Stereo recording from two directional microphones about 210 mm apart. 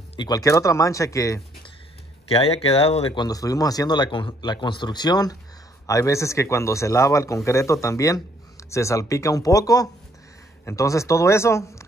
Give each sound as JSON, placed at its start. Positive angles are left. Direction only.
{"t": 0.1, "sound": "speech", "side_deg": 20}
{"t": 2.2, "sound": "a man's voice", "side_deg": 30}
{"t": 3.2, "sound": "a man's voice", "side_deg": 15}